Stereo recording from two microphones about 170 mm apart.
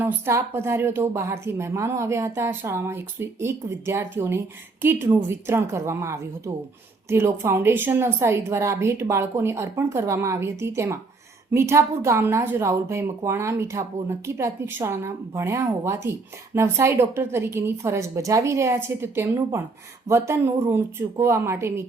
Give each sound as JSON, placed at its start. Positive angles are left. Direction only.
{"t": 0.0, "sound": "a woman's voice", "side_deg": -15}